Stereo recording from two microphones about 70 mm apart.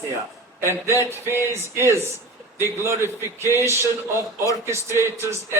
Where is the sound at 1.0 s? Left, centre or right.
Right.